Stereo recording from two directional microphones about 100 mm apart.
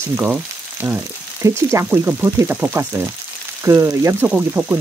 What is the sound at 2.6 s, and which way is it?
Frying, 20° right (ahead or behind).